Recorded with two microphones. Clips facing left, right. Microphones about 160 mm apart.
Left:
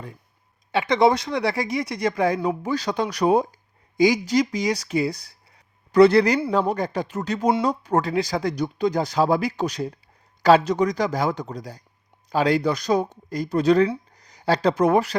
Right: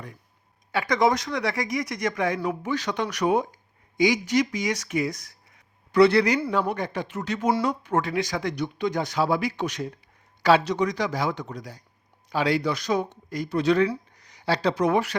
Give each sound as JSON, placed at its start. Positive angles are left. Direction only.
{"t": 0.7, "sound": "a man's voice", "side_deg": 25}